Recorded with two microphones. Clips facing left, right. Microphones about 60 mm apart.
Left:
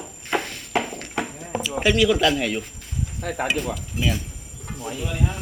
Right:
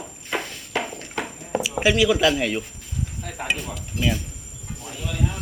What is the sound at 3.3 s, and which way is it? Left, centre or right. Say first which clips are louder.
Speech: left 7 dB; left.